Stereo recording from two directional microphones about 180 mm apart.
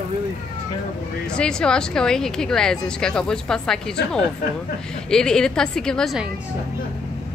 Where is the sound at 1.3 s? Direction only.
5° left (ahead or behind).